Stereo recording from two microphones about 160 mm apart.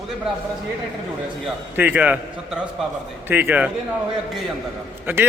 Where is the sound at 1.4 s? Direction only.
10° right (ahead or behind).